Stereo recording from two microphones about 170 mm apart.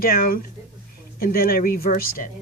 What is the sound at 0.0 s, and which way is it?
Speech, 60° left (ahead or behind).